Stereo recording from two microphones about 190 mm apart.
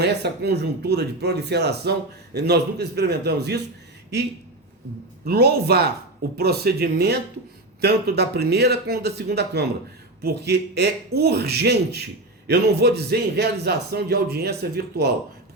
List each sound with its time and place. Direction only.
0.0 s speech: 60° right (ahead or behind)
5.2 s speech: 55° right (ahead or behind)